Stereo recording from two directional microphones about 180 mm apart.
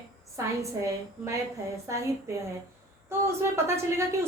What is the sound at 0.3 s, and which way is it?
A woman's voice, 15° right (ahead or behind).